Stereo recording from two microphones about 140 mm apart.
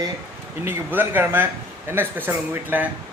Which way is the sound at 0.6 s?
15° right (ahead or behind).